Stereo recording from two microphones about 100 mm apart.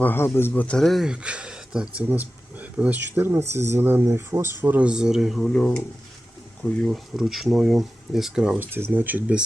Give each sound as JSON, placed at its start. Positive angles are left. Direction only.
{"t": 0.0, "sound": "a man's voice", "side_deg": 20}
{"t": 0.8, "sound": "speech", "side_deg": 0}
{"t": 5.4, "sound": "speech", "side_deg": 10}
{"t": 8.5, "sound": "speech", "side_deg": -20}